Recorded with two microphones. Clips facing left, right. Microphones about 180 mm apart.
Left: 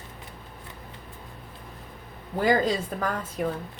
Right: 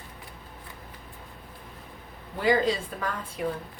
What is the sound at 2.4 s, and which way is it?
A woman's voice, 45° left (ahead or behind).